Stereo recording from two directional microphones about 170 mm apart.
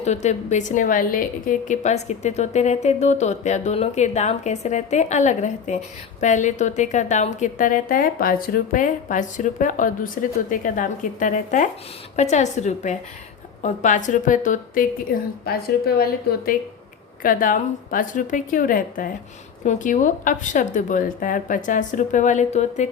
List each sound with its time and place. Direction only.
0.0 s a woman's voice: 40° left (ahead or behind)
15.4 s a woman's voice: 65° left (ahead or behind); by 22.9 s 45° left (ahead or behind)